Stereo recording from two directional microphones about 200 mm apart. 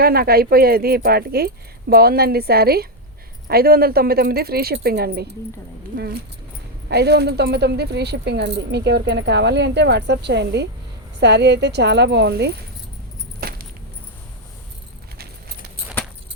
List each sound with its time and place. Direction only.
0.0 s speech: 50° right (ahead or behind)
6.9 s speech: 55° right (ahead or behind)
13.4 s keys jangling: 45° right (ahead or behind)